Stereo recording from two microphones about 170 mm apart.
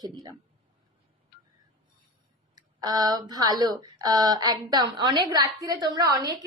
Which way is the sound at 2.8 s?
25° right (ahead or behind).